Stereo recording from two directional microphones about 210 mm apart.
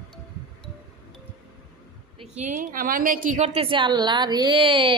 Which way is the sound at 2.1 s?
35° right (ahead or behind).